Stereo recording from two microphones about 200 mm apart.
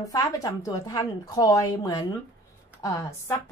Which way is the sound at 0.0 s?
20° left (ahead or behind).